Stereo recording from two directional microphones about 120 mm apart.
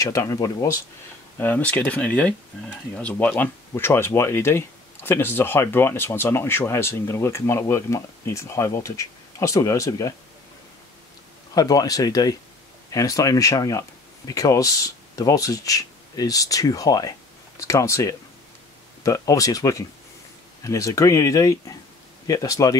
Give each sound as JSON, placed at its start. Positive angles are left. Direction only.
{"t": 0.0, "sound": "speech", "side_deg": 25}
{"t": 1.4, "sound": "speech", "side_deg": 15}
{"t": 11.5, "sound": "speech", "side_deg": 30}